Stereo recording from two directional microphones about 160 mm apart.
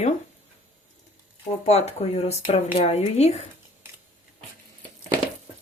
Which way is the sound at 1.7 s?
40° left (ahead or behind).